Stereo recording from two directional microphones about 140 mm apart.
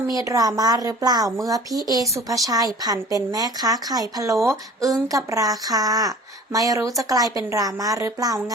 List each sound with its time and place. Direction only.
0.1 s speech: 25° right (ahead or behind)